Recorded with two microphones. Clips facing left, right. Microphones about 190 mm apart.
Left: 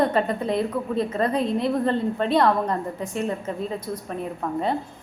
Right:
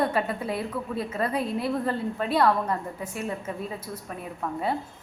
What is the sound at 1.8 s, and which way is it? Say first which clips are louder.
Speech: left 5 dB; 30° left (ahead or behind).